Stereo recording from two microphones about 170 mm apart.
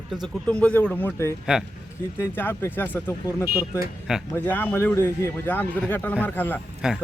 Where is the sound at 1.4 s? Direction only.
Centre (ahead or behind).